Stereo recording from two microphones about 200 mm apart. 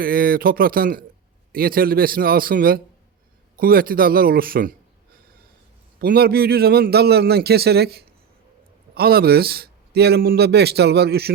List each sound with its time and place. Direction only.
0.0 s a man's voice: 45° right (ahead or behind)
6.0 s a man's voice: 50° right (ahead or behind)